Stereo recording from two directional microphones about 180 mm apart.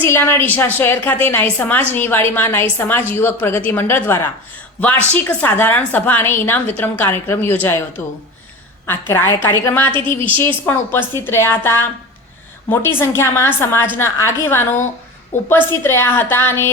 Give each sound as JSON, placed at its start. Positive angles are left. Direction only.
{"t": 0.1, "sound": "a woman's voice", "side_deg": 10}
{"t": 10.2, "sound": "a woman's voice", "side_deg": -30}
{"t": 10.4, "sound": "a woman's voice", "side_deg": 15}